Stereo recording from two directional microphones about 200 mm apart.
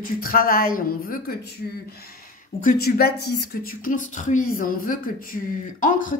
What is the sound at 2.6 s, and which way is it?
Speech, 45° left (ahead or behind).